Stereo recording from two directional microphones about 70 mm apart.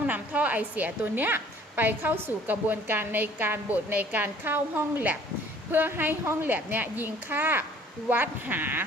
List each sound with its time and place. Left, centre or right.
0.1 s a woman's voice: right